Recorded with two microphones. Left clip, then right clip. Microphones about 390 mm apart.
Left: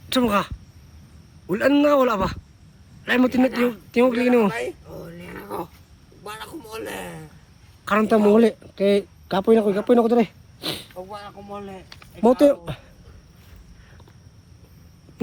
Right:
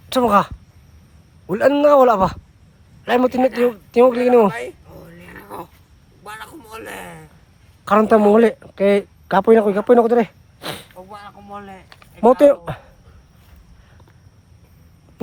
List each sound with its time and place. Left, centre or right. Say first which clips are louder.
0.1 s a man's voice: right 6 dB; centre
3.9 s dog: right 6 dB; centre
6.2 s a man's voice: right 1 dB; centre
10.9 s a man's voice: left 1 dB; centre
12.2 s speech: right 5 dB; right